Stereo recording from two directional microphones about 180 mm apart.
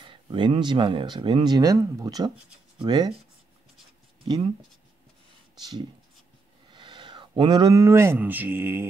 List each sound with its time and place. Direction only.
0.0 s speech: 25° right (ahead or behind)
5.6 s speech: 25° right (ahead or behind)